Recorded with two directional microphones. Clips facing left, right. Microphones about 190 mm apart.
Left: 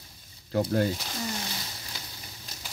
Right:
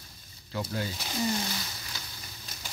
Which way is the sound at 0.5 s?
50° left (ahead or behind).